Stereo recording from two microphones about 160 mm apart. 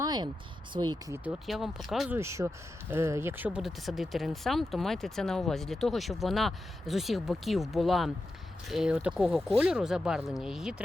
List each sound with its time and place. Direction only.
0.0 s a sound: 25° right (ahead or behind)
0.7 s speech: 25° right (ahead or behind)
1.5 s speech: centre (ahead or behind)
2.1 s speech: 15° right (ahead or behind)